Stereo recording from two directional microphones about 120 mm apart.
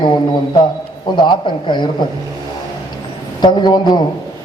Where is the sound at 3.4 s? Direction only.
35° left (ahead or behind).